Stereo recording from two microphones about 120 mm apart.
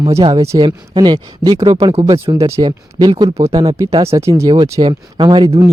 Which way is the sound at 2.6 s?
35° right (ahead or behind).